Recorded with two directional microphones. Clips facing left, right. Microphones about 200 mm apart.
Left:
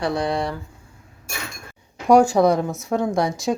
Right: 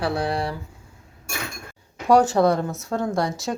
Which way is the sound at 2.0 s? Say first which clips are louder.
Left 2 dB; 10° left (ahead or behind).